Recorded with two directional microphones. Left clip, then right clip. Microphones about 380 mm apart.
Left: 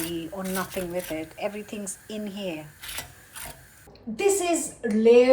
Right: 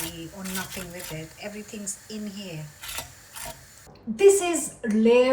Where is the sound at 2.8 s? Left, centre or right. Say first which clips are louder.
Right 1 dB; centre.